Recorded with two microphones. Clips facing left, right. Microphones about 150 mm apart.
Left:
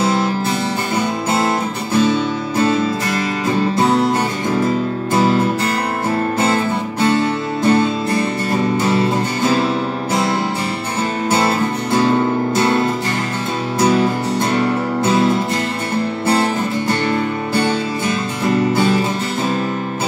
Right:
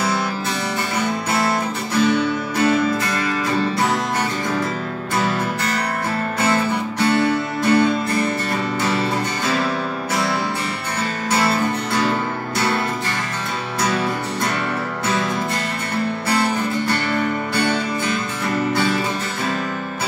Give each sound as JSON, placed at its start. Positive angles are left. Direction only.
{"t": 0.0, "sound": "music", "side_deg": 25}
{"t": 5.1, "sound": "music", "side_deg": 25}
{"t": 11.2, "sound": "music", "side_deg": 25}
{"t": 16.3, "sound": "music", "side_deg": 25}